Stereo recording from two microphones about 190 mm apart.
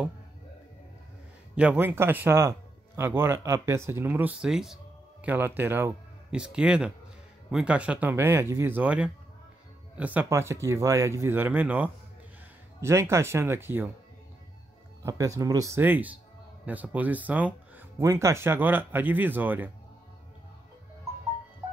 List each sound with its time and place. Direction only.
1.5 s speech: 5° right (ahead or behind)
15.0 s speech: 20° right (ahead or behind)